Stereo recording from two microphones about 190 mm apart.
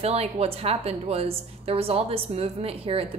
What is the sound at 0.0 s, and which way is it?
A woman's voice, 35° right (ahead or behind).